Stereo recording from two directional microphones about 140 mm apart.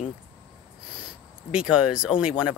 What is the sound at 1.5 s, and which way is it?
Speech, 5° right (ahead or behind).